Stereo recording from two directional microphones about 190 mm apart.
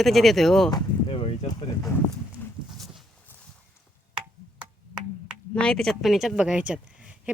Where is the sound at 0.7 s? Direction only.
25° left (ahead or behind).